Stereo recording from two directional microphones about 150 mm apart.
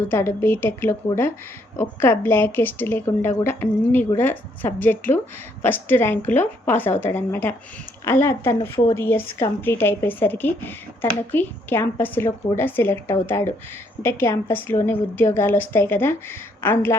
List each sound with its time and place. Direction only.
0.1 s a woman's voice: 15° left (ahead or behind)